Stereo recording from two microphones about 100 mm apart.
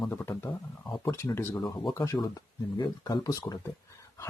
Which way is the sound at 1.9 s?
35° left (ahead or behind).